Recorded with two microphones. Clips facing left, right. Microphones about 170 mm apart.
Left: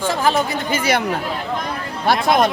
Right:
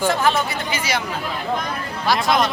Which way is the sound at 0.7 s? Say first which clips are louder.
Left 8 dB; 55° left (ahead or behind).